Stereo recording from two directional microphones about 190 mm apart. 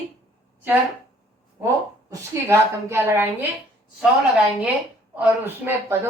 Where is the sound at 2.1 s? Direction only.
15° right (ahead or behind).